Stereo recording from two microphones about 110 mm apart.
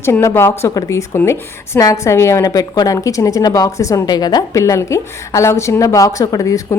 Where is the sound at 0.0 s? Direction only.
25° left (ahead or behind).